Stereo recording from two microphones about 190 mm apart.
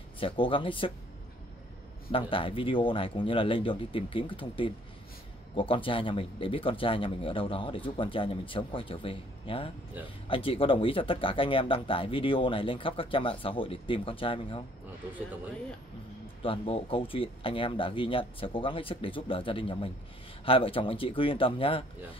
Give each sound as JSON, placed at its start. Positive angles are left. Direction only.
{"t": 0.2, "sound": "speech", "side_deg": 25}
{"t": 2.0, "sound": "speech", "side_deg": 30}
{"t": 16.4, "sound": "speech", "side_deg": 30}